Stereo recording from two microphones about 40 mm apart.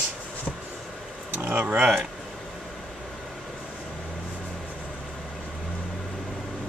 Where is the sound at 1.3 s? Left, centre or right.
Right.